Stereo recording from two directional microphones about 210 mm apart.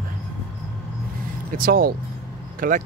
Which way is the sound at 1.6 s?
45° right (ahead or behind).